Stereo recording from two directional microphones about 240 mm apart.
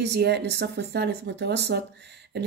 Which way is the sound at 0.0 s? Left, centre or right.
Right.